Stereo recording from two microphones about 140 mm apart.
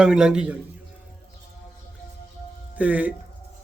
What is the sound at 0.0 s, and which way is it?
Speech, 5° right (ahead or behind).